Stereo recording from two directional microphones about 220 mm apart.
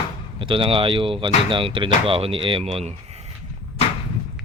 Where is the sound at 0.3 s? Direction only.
25° right (ahead or behind).